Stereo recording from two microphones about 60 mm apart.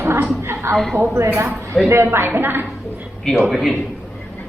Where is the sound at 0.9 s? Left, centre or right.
Right.